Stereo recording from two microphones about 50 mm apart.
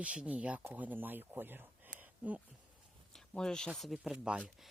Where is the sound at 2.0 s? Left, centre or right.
Right.